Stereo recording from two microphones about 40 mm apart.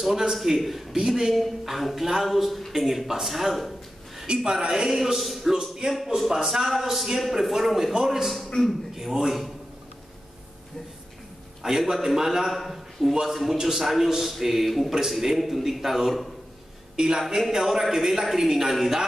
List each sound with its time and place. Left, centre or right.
0.0 s a man's voice: centre
0.9 s a man's voice: centre
1.3 s a man's voice: centre
4.5 s a man's voice: centre
8.5 s a man's voice: centre
8.9 s a man's voice: centre
11.6 s a man's voice: centre
16.9 s a woman's voice: centre
17.4 s a man's voice: centre